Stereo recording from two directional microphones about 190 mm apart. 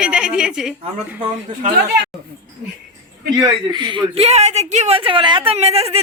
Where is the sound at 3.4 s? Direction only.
25° right (ahead or behind).